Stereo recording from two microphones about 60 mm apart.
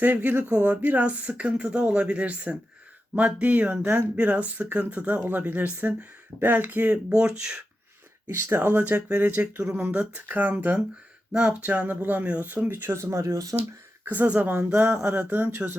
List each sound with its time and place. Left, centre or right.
0.0 s speech: right
7.2 s speech: centre
8.3 s speech: right
9.0 s speech: centre
9.2 s speech: right
11.3 s speech: centre
12.5 s speech: right
13.0 s speech: right
14.0 s speech: right